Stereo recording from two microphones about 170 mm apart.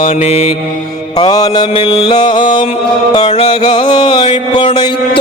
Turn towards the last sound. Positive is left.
turn(degrees=25)  # may be behind; listen again after turning